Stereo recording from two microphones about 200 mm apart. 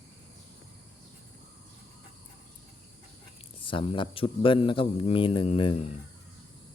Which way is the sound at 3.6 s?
25° left (ahead or behind).